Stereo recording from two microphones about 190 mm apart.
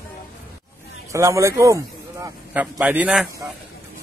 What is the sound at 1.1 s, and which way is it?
Speech, 15° right (ahead or behind).